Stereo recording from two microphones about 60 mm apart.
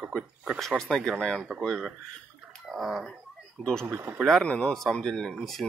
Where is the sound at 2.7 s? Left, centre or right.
Centre.